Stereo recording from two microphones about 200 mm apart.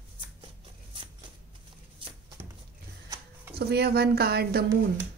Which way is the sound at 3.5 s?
55° right (ahead or behind).